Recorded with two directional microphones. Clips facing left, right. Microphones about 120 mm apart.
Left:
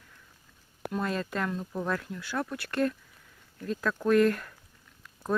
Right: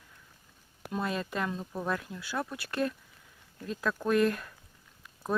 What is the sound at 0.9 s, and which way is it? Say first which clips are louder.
Speech: left 1 dB; 15° right (ahead or behind).